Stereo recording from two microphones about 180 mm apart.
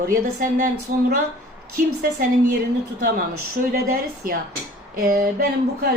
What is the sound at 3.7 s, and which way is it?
A woman's voice, 50° right (ahead or behind).